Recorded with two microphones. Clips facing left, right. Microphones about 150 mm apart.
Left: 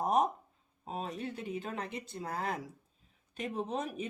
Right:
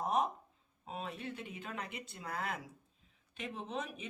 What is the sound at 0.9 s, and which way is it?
Speech, 40° left (ahead or behind).